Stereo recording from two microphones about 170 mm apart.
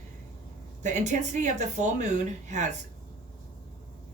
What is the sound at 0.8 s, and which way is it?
Speech, 45° right (ahead or behind).